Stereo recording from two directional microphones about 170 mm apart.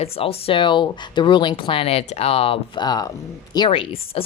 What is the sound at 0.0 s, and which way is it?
Speech, 35° left (ahead or behind).